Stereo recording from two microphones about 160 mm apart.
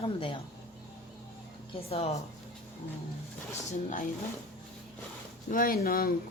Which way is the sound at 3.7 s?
60° left (ahead or behind).